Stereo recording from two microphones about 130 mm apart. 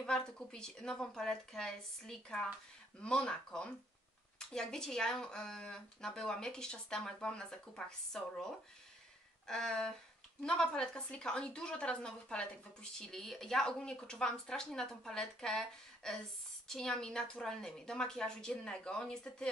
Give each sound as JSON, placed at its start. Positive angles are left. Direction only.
{"t": 0.0, "sound": "speech", "side_deg": 5}
{"t": 9.5, "sound": "speech", "side_deg": 5}